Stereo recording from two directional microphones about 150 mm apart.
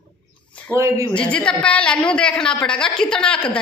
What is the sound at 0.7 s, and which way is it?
Speech, 20° right (ahead or behind).